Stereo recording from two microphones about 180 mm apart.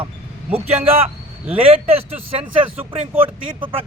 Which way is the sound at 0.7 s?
35° right (ahead or behind).